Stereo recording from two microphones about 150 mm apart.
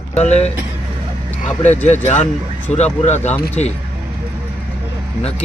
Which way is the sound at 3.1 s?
50° left (ahead or behind).